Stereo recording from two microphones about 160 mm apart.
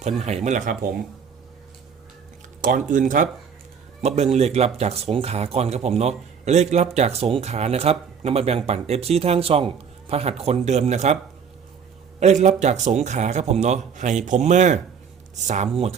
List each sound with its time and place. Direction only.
0.2 s a man's voice: 45° right (ahead or behind)
2.6 s speech: 60° right (ahead or behind)
4.0 s a man's voice: 40° right (ahead or behind)
12.2 s a man's voice: 45° right (ahead or behind)